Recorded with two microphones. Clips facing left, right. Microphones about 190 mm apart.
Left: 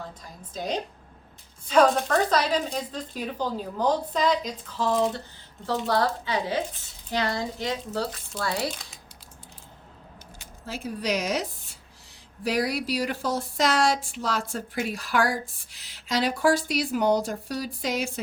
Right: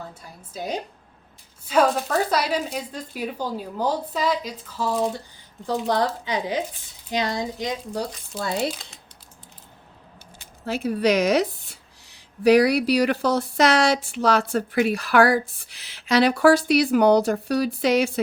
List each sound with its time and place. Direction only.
0.1 s speech: 10° right (ahead or behind)
10.7 s a woman's voice: 65° right (ahead or behind)